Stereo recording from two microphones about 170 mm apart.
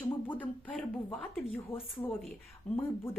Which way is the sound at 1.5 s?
15° left (ahead or behind).